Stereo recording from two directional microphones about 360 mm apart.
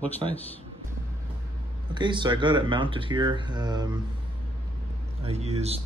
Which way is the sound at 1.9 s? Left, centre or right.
Centre.